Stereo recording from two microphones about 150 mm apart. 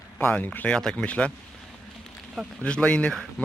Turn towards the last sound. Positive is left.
turn(degrees=10)  # may be behind; listen again after turning